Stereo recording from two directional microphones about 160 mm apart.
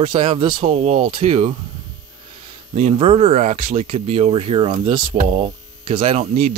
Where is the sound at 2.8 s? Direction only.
40° right (ahead or behind).